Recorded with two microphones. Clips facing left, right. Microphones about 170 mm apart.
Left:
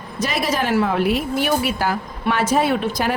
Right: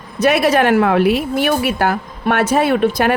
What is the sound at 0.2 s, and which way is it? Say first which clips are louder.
A woman's voice: right 8 dB; 65° right (ahead or behind).